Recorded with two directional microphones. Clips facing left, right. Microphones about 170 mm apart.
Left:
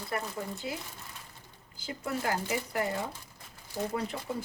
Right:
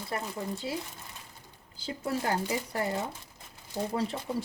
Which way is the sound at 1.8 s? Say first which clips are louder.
Right 2 dB; 30° right (ahead or behind).